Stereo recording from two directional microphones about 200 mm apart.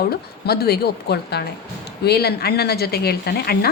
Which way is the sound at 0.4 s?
50° left (ahead or behind).